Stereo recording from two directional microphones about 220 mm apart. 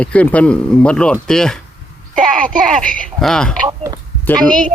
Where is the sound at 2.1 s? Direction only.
35° right (ahead or behind).